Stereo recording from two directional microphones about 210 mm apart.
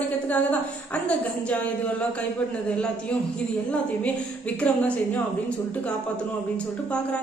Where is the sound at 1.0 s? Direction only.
5° left (ahead or behind).